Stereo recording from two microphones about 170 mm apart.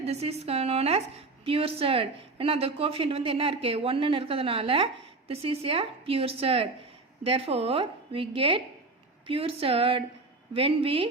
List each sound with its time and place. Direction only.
0.0 s a woman's voice: 35° right (ahead or behind)